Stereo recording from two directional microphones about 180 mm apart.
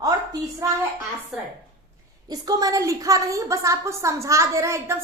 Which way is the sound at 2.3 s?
20° right (ahead or behind).